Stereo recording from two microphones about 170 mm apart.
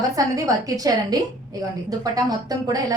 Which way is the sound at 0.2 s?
20° right (ahead or behind).